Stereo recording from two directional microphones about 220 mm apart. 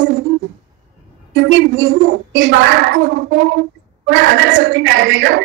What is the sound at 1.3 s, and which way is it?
A woman's voice, 55° right (ahead or behind).